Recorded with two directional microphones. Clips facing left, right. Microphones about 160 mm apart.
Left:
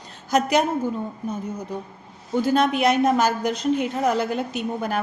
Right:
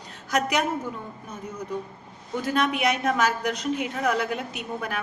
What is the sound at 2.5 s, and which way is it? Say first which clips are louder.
A woman's voice: left 4 dB; 30° left (ahead or behind).